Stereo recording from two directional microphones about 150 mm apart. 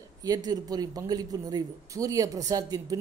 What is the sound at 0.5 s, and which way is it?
Speech, 25° right (ahead or behind).